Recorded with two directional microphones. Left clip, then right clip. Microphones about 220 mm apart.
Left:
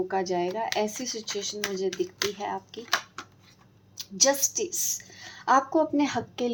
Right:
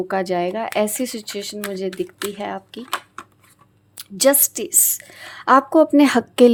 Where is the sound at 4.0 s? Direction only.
50° right (ahead or behind).